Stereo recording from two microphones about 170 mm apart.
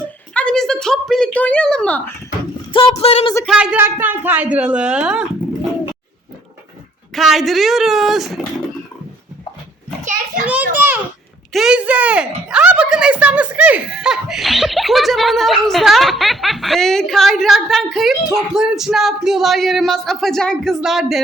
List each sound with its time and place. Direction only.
0.3 s a sound: 5° left (ahead or behind)
2.7 s speech: 35° left (ahead or behind)
3.4 s a woman's voice: 5° right (ahead or behind)
7.1 s speech: centre (ahead or behind)
10.0 s children playing: 45° right (ahead or behind)
10.8 s a sound: 10° right (ahead or behind)
11.5 s speech: 5° right (ahead or behind)